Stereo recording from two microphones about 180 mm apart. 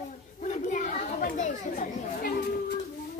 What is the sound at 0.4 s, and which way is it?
Chatter, 45° left (ahead or behind).